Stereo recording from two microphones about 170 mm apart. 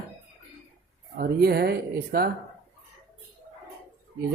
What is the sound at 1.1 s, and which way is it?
Speech, 60° right (ahead or behind).